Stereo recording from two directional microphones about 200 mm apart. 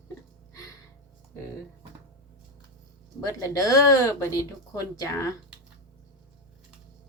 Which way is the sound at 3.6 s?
15° left (ahead or behind).